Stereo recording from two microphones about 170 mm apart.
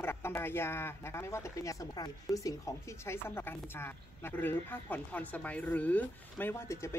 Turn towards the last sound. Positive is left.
turn(degrees=15)  # may be behind; listen again after turning